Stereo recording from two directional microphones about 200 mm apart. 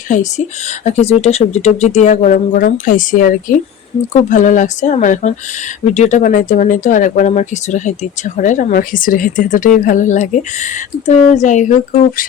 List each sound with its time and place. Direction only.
0.1 s speech: 35° left (ahead or behind)